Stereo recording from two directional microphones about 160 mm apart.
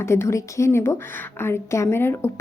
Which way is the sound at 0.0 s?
15° left (ahead or behind).